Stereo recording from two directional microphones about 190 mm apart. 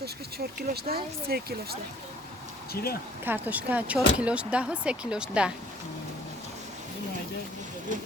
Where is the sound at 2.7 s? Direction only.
55° left (ahead or behind).